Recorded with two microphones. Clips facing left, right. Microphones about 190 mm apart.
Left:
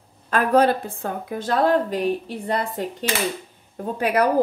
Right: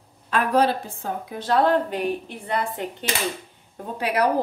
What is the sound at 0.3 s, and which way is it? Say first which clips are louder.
A woman's voice: left 3 dB; 50° left (ahead or behind).